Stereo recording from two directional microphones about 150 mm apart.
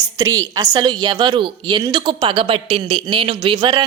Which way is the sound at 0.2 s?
25° right (ahead or behind).